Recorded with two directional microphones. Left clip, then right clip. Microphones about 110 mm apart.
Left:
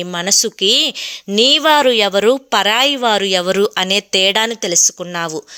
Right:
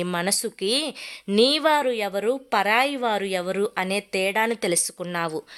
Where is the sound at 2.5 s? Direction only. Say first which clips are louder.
Left 7 dB; 35° left (ahead or behind).